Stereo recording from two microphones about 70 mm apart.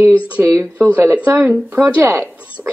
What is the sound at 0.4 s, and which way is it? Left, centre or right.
Speech, right.